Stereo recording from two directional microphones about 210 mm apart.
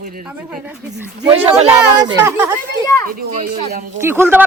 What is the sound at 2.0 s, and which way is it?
Speech, 15° right (ahead or behind).